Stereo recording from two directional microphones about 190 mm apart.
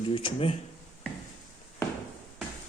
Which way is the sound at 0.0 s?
25° left (ahead or behind).